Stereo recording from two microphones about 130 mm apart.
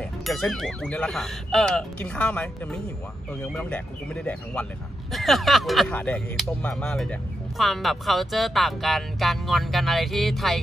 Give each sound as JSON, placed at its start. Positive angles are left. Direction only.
{"t": 0.2, "sound": "speech", "side_deg": 5}
{"t": 5.9, "sound": "speech", "side_deg": 10}